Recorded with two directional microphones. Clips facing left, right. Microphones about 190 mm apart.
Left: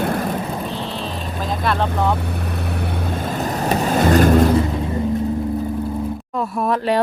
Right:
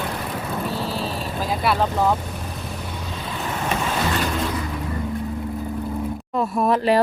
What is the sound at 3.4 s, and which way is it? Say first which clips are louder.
Vehicle: left 4 dB; 40° left (ahead or behind).